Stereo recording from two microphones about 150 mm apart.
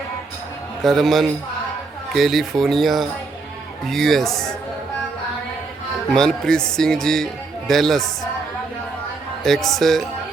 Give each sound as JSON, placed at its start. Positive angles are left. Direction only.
{"t": 0.8, "sound": "speech", "side_deg": 0}
{"t": 6.1, "sound": "speech", "side_deg": 5}
{"t": 9.4, "sound": "speech", "side_deg": 0}